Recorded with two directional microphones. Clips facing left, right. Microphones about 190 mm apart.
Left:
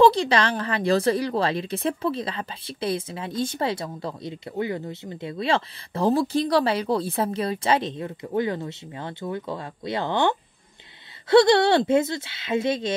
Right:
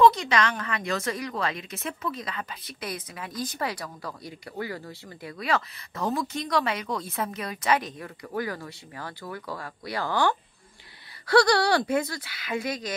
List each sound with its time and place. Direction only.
0.0 s a woman's voice: 30° left (ahead or behind)